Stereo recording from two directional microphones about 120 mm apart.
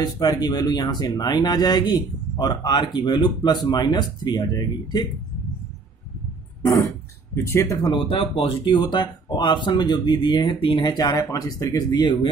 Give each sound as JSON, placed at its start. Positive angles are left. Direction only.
{"t": 0.0, "sound": "speech", "side_deg": 35}
{"t": 7.7, "sound": "speech", "side_deg": 35}
{"t": 8.1, "sound": "speech", "side_deg": 45}
{"t": 11.1, "sound": "speech", "side_deg": 25}